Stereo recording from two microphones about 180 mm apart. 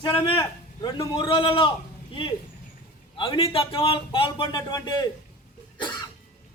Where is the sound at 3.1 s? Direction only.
30° left (ahead or behind).